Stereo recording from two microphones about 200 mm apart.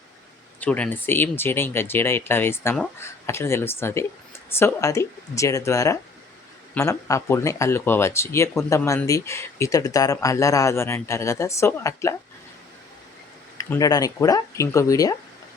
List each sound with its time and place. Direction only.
0.6 s speech: 5° left (ahead or behind)
13.6 s speech: 15° left (ahead or behind)